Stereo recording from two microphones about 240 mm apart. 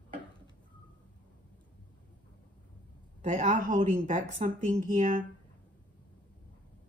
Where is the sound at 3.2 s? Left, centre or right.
Right.